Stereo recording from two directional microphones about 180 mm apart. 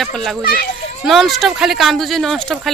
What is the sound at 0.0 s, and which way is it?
A woman's voice, centre (ahead or behind).